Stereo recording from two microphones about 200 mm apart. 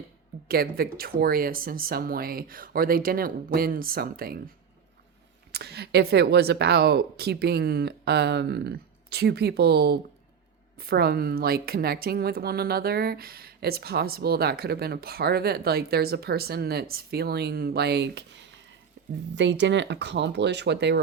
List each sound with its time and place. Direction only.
0.4 s speech: 50° right (ahead or behind)
5.5 s speech: 55° right (ahead or behind)
19.0 s a sound: 65° right (ahead or behind)
19.4 s speech: 65° right (ahead or behind)